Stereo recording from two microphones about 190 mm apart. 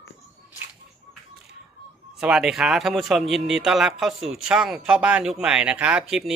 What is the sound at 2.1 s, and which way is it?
Speech, 5° right (ahead or behind).